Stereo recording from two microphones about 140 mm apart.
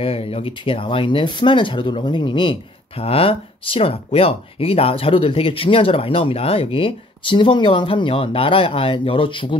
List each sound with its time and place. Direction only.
0.0 s speech: 45° left (ahead or behind)